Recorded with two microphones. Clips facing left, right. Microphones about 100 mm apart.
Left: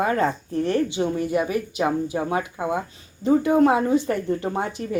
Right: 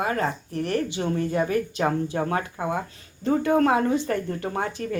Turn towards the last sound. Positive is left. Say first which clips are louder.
# left 2 dB
turn(degrees=20)  # may be behind; listen again after turning